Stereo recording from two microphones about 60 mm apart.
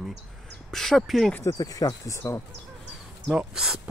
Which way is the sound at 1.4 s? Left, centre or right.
Left.